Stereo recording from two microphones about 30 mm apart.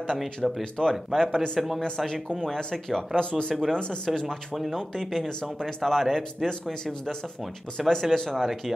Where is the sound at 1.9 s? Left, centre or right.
Left.